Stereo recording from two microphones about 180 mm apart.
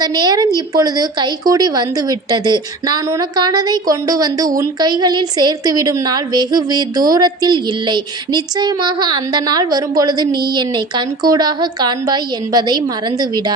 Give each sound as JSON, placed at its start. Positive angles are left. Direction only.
{"t": 0.0, "sound": "a woman's voice", "side_deg": -20}